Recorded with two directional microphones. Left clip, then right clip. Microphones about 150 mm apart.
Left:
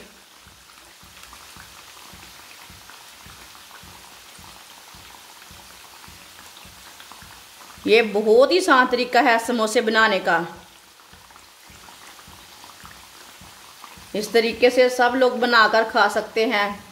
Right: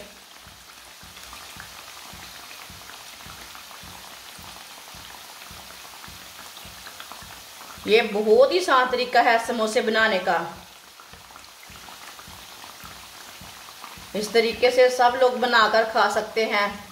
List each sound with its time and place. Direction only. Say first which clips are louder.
7.8 s a woman's voice: left 3 dB; 90° left
14.1 s a woman's voice: left 1 dB; 80° left